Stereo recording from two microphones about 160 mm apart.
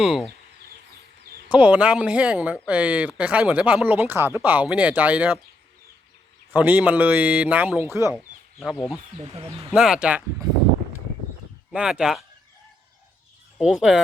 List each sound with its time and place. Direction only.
0.0 s speech: centre (ahead or behind)
1.5 s speech: 10° right (ahead or behind)
6.5 s speech: 10° right (ahead or behind)
9.2 s speech: 40° right (ahead or behind)
9.7 s speech: 5° right (ahead or behind)
10.4 s a sound: 25° right (ahead or behind)
11.7 s speech: 5° right (ahead or behind)